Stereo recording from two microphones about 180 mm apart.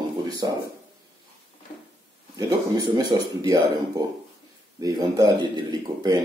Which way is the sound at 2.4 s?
20° right (ahead or behind).